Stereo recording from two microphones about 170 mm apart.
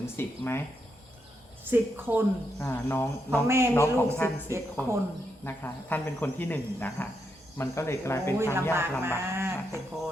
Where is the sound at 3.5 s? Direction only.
15° right (ahead or behind).